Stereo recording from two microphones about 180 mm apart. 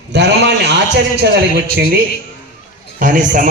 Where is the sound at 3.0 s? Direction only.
45° right (ahead or behind).